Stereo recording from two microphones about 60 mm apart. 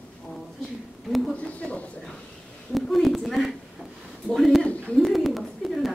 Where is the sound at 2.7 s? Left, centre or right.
Centre.